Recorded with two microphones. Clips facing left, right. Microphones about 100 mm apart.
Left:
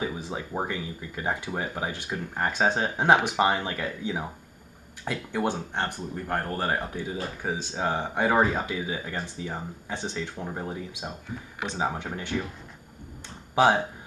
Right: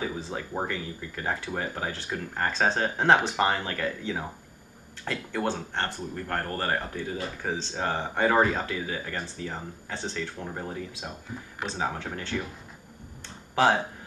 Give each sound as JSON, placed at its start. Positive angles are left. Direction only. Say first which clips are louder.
{"t": 0.0, "sound": "speech", "louder": "left 1 dB", "side_deg": 15}